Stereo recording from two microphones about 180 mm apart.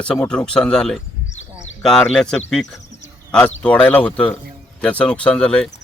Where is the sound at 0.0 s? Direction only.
5° left (ahead or behind).